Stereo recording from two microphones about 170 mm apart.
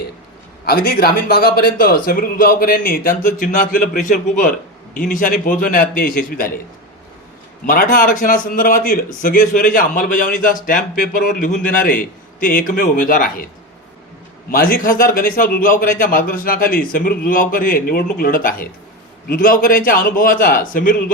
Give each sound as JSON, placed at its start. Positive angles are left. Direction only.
{"t": 0.6, "sound": "a man's voice", "side_deg": 60}
{"t": 7.7, "sound": "a man's voice", "side_deg": 55}
{"t": 14.5, "sound": "a man's voice", "side_deg": 60}